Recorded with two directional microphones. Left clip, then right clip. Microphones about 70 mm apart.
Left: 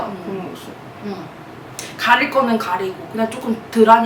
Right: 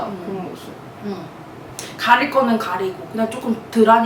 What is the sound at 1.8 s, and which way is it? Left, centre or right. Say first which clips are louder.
A woman's voice: even; centre.